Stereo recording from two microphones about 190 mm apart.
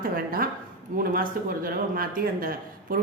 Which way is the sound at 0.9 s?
50° right (ahead or behind).